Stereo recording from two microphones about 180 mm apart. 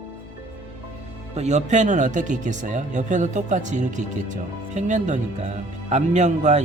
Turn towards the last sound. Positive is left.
turn(degrees=-40)  # may be behind; listen again after turning